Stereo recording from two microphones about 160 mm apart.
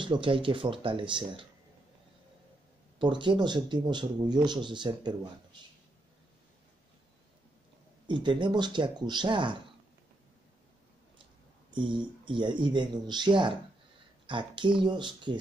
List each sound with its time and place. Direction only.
0.0 s speech: 30° right (ahead or behind)
3.0 s speech: 30° right (ahead or behind)
8.1 s speech: 30° right (ahead or behind)
11.7 s speech: 30° right (ahead or behind)